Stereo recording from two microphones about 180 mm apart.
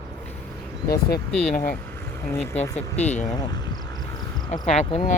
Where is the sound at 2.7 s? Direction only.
40° left (ahead or behind).